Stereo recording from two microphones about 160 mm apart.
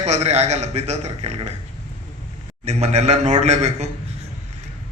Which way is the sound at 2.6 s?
45° right (ahead or behind).